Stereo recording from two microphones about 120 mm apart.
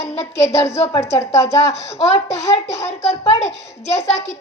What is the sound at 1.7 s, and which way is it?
A woman's voice, 60° left (ahead or behind).